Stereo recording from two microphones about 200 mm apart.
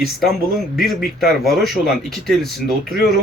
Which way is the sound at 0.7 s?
Centre (ahead or behind).